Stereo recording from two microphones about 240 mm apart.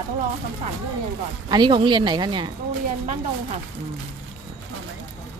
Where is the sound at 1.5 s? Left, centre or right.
Centre.